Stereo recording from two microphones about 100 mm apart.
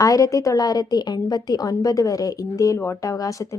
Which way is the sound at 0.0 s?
35° left (ahead or behind).